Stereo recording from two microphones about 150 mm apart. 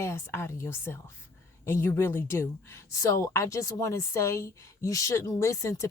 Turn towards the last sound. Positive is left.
turn(degrees=20)  # may be behind; listen again after turning